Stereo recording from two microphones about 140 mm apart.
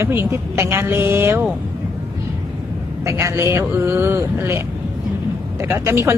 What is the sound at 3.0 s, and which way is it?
Speech, 20° right (ahead or behind).